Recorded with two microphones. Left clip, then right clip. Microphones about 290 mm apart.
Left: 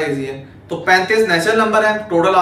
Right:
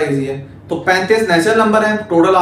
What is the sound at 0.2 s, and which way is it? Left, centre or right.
A man's voice, centre.